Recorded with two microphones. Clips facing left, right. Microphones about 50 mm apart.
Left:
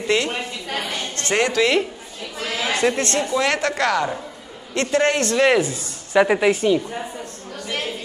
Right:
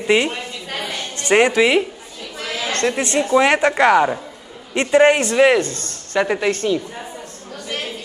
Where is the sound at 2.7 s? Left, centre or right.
Centre.